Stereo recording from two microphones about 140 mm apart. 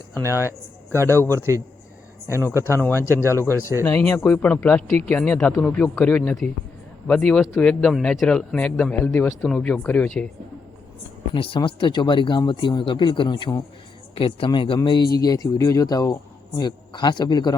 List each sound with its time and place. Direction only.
0.2 s a man's voice: 15° right (ahead or behind)
3.2 s speech: 20° left (ahead or behind)
11.3 s speech: 40° left (ahead or behind)